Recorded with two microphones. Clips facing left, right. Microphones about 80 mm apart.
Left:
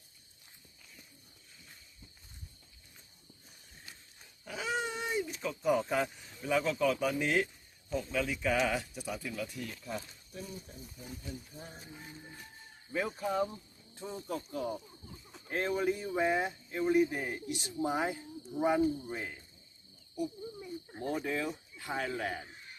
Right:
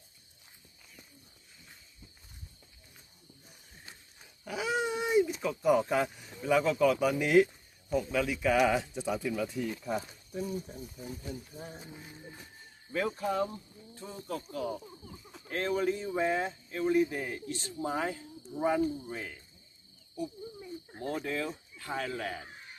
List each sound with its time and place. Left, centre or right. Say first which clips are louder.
3.9 s pig: right 2 dB; right
4.4 s dog: right 4 dB; centre
5.1 s a sound: right 12 dB; centre
5.4 s speech: right 4 dB; centre
8.8 s speech: right 7 dB; centre
10.4 s speech: right 10 dB; right
11.5 s speech: right 4 dB; centre
12.9 s speech: right 2 dB; centre
13.9 s speech: even; centre
15.1 s a sound: right 2 dB; centre
15.4 s speech: right 1 dB; centre
17.2 s speech: even; centre
21.0 s speech: even; centre